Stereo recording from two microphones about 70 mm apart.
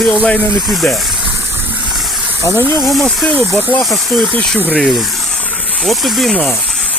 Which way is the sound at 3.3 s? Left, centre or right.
Centre.